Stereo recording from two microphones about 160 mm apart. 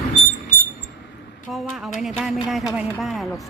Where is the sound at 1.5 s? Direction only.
Centre (ahead or behind).